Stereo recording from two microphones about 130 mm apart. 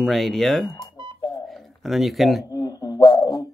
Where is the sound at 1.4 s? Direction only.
Centre (ahead or behind).